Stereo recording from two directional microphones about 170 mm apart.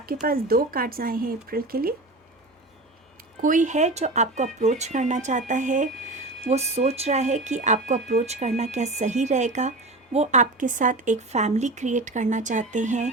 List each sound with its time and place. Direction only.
0.0 s speech: 60° right (ahead or behind)
3.4 s speech: 50° right (ahead or behind)